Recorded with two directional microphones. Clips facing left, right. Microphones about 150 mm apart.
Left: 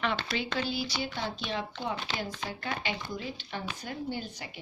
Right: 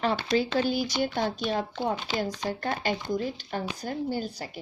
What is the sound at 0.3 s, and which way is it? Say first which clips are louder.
A woman's voice: right 7 dB; 45° right (ahead or behind).